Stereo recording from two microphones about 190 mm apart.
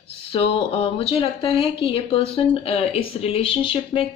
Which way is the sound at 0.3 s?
30° left (ahead or behind).